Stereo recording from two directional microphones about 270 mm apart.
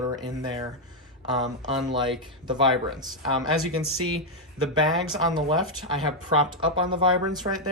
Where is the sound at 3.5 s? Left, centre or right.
Right.